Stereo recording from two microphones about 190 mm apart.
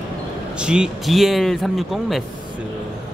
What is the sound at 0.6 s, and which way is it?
Speech, 5° right (ahead or behind).